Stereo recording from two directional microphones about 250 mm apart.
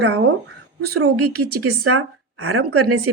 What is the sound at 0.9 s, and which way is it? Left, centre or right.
A woman's voice, right.